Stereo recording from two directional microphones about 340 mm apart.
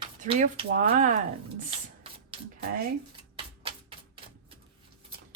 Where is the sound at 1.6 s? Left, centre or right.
Centre.